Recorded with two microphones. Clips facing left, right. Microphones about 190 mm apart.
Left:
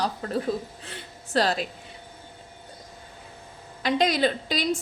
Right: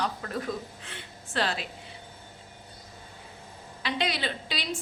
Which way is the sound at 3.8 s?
45° left (ahead or behind).